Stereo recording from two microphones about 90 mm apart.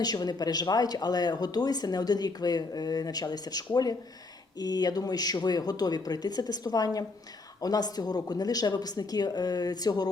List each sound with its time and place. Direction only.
0.0 s speech: 50° left (ahead or behind)